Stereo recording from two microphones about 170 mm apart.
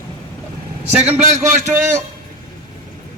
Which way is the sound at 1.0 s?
40° right (ahead or behind).